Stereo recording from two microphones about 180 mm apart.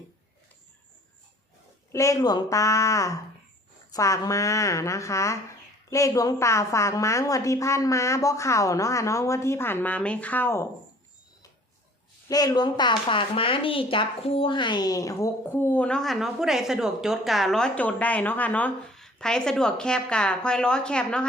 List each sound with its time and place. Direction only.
1.9 s a woman's voice: 15° left (ahead or behind)
12.3 s a woman's voice: 20° left (ahead or behind); by 21.2 s 5° left (ahead or behind)